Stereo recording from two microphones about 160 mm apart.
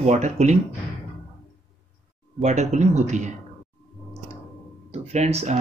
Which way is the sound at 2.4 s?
45° right (ahead or behind).